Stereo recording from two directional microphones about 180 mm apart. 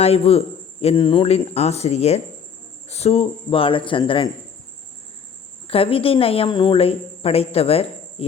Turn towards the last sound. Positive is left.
turn(degrees=35)  # may be behind; listen again after turning